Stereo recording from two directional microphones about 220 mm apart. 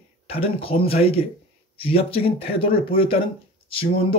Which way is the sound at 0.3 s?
25° left (ahead or behind).